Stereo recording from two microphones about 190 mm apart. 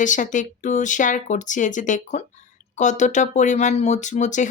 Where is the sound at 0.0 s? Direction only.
40° left (ahead or behind).